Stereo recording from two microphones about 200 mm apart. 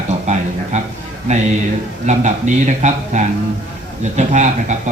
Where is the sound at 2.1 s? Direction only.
35° right (ahead or behind).